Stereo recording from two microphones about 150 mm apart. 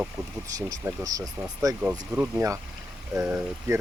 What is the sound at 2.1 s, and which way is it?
Speech, 10° right (ahead or behind).